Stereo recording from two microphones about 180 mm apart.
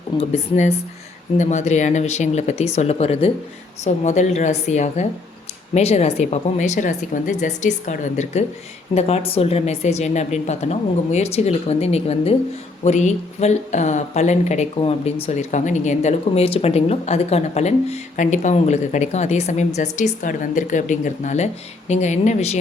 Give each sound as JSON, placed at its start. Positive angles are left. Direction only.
{"t": 0.2, "sound": "speech", "side_deg": 40}